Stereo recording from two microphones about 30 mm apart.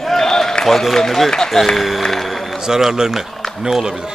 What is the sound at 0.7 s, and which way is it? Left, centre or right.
Speech, centre.